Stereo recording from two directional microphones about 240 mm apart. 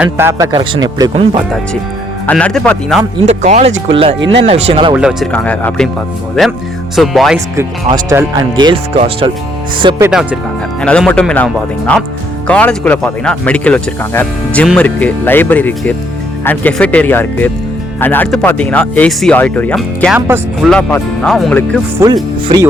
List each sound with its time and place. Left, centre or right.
0.0 s a man's voice: centre
2.2 s speech: centre
3.2 s speech: right
4.9 s speech: centre
6.9 s speech: centre
7.5 s speech: centre
10.8 s speech: centre
20.7 s speech: centre
21.9 s a man's voice: centre